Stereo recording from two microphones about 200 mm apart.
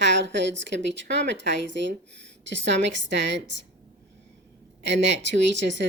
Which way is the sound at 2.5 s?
65° right (ahead or behind).